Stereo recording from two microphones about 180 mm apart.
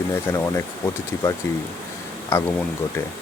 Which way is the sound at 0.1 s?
15° left (ahead or behind).